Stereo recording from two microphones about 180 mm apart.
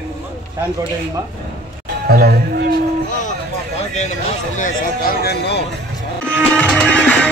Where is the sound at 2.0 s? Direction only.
60° right (ahead or behind).